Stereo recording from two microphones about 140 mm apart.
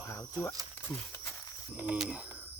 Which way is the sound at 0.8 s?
10° left (ahead or behind).